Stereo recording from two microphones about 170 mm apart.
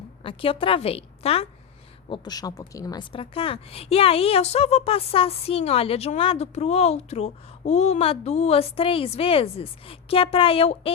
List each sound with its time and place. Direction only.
0.2 s a woman's voice: 30° left (ahead or behind)